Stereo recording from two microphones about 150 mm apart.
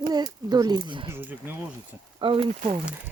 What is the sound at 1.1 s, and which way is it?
Speech, 15° right (ahead or behind).